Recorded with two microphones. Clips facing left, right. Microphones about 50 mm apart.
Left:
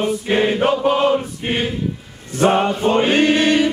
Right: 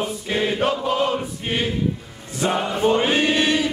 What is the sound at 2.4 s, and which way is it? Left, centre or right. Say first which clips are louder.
Chant: left 7 dB; left.